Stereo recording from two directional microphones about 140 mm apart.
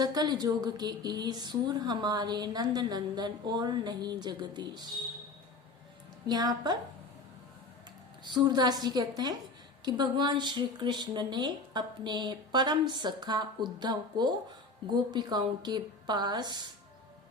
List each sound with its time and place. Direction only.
0.0 s speech: 30° right (ahead or behind)
6.2 s speech: 30° right (ahead or behind)
8.3 s speech: 30° right (ahead or behind)